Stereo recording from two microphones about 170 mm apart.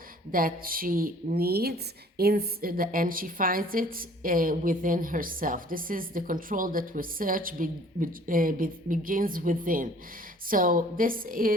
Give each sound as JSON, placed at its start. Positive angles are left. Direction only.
{"t": 0.3, "sound": "a woman's voice", "side_deg": -55}